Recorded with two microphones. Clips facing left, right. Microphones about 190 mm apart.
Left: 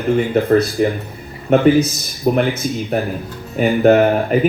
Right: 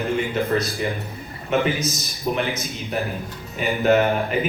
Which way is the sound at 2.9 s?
60° left (ahead or behind).